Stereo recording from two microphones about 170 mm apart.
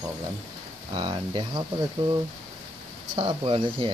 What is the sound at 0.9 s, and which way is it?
Speech, 25° right (ahead or behind).